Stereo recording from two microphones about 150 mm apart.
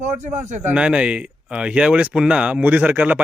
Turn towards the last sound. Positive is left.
turn(degrees=-10)  # may be behind; listen again after turning